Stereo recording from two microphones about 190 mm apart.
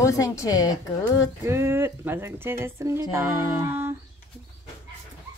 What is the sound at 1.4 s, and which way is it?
Speech, 15° right (ahead or behind).